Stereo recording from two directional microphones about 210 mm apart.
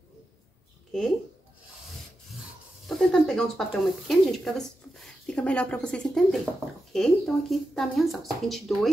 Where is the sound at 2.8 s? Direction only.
Centre (ahead or behind).